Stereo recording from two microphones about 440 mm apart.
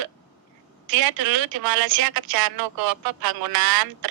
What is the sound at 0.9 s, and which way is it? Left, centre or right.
Speech, right.